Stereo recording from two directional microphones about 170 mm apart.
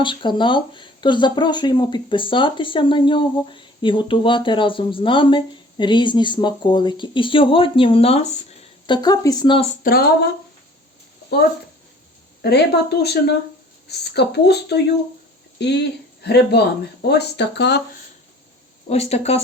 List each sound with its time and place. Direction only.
0.0 s speech: 30° left (ahead or behind)
8.9 s speech: 25° left (ahead or behind)
9.8 s speech: 60° left (ahead or behind)
12.4 s speech: 75° left (ahead or behind)
16.2 s speech: 75° left (ahead or behind)
18.9 s speech: 40° left (ahead or behind)